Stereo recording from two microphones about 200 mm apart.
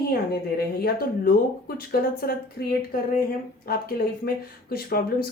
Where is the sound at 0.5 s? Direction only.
50° left (ahead or behind).